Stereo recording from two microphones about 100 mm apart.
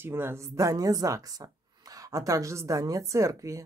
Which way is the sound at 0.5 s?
35° right (ahead or behind).